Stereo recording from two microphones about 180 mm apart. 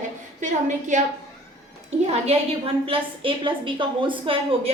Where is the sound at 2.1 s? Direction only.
35° right (ahead or behind).